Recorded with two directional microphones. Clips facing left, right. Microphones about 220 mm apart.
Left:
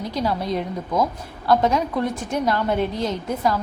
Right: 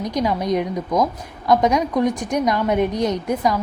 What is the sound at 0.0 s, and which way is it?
A woman's voice, 15° right (ahead or behind).